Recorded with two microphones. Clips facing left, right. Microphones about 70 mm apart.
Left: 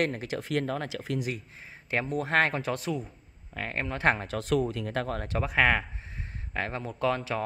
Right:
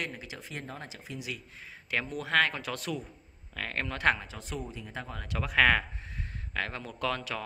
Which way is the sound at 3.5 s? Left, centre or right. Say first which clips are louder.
Left 2 dB; left.